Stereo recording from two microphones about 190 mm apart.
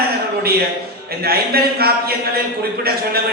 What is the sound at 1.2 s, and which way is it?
A man's voice, 55° right (ahead or behind).